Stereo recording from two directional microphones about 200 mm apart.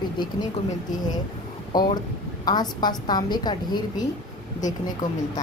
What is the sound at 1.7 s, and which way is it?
A woman's voice, 20° left (ahead or behind).